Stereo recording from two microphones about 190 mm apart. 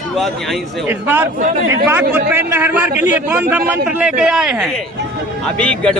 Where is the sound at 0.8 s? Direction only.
10° right (ahead or behind).